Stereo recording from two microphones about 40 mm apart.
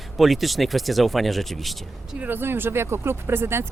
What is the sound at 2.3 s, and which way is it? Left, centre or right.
Speech, right.